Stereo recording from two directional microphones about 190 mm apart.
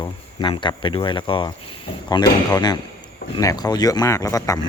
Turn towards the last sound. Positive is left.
turn(degrees=15)  # may be behind; listen again after turning